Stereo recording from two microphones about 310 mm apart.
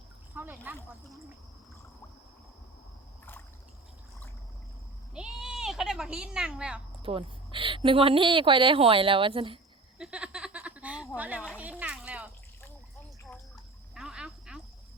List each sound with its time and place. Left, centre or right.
0.3 s speech: centre
5.1 s speech: centre
7.0 s a woman's voice: centre
10.0 s a sound: centre
13.9 s frog: centre